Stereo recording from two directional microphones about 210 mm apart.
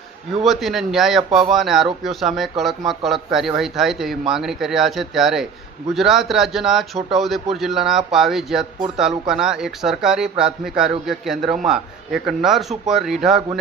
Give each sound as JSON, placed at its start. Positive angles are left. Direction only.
{"t": 0.4, "sound": "speech", "side_deg": 0}
{"t": 11.4, "sound": "speech", "side_deg": -35}
{"t": 11.7, "sound": "speech", "side_deg": 0}